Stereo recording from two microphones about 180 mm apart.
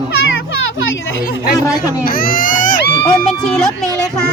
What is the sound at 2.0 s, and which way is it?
Speech, 50° left (ahead or behind).